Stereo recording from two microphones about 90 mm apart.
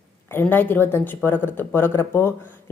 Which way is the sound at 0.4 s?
20° left (ahead or behind).